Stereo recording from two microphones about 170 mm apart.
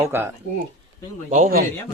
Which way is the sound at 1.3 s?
60° right (ahead or behind).